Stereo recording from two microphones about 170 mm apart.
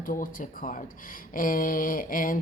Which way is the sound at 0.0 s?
55° left (ahead or behind).